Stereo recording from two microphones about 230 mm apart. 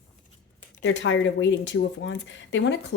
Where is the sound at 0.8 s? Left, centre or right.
Left.